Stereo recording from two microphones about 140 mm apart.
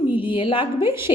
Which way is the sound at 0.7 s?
20° right (ahead or behind).